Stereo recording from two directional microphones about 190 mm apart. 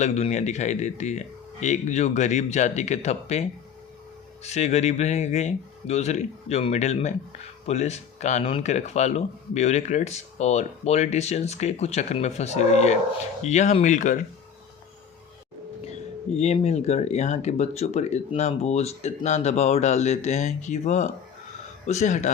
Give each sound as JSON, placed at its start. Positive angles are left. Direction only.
{"t": 0.0, "sound": "speech", "side_deg": 35}
{"t": 16.4, "sound": "speech", "side_deg": 35}